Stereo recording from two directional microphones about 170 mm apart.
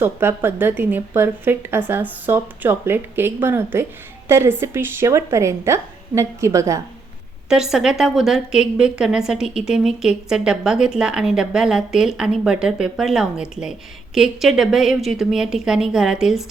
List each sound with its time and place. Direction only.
0.0 s a woman's voice: 15° right (ahead or behind)
7.5 s a woman's voice: 5° right (ahead or behind)